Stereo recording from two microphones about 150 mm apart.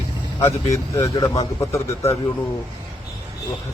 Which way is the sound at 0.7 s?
25° left (ahead or behind).